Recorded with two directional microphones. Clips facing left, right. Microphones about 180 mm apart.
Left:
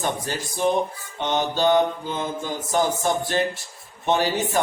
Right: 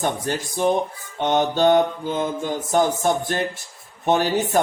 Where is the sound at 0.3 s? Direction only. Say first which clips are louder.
Right 2 dB; 50° right (ahead or behind).